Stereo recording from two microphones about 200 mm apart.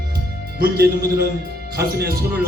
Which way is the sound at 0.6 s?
50° right (ahead or behind).